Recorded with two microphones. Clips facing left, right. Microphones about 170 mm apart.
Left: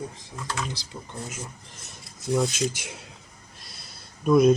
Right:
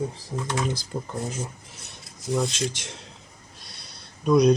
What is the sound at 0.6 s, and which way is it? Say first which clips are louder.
Speech: right 6 dB; 50° right (ahead or behind).